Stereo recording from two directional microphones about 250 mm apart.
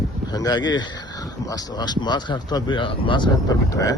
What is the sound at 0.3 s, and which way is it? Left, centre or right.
Speech, centre.